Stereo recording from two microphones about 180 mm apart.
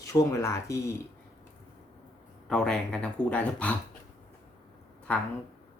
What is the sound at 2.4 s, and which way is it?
A man's voice, 5° left (ahead or behind).